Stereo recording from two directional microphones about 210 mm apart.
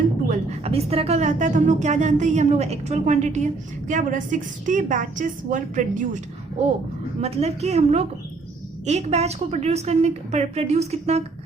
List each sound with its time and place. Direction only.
0.3 s a woman's voice: 30° right (ahead or behind)
7.2 s a woman's voice: 30° right (ahead or behind)